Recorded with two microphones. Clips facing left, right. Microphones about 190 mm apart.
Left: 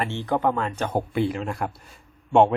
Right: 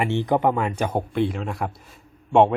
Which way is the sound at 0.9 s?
Centre (ahead or behind).